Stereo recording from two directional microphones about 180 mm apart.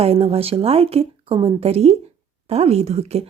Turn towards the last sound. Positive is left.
turn(degrees=-35)  # may be behind; listen again after turning